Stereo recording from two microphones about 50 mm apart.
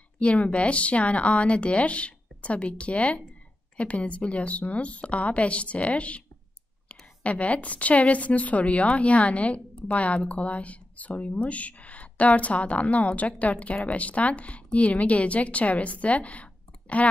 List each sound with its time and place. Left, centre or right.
0.2 s a woman's voice: left